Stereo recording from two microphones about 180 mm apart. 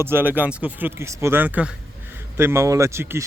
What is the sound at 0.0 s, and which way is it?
Speech, 10° right (ahead or behind).